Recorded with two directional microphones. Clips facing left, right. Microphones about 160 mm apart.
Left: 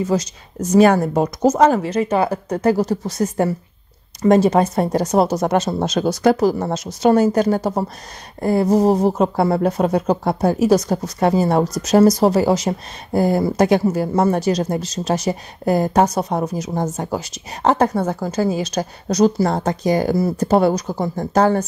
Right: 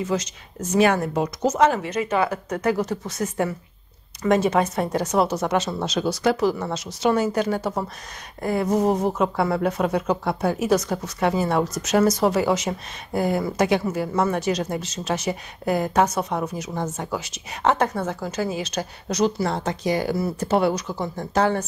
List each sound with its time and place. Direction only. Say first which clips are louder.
0.0 s speech: left 5 dB; 35° left (ahead or behind)